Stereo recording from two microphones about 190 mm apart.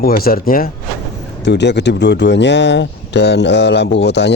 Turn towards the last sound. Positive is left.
turn(degrees=65)  # may be behind; listen again after turning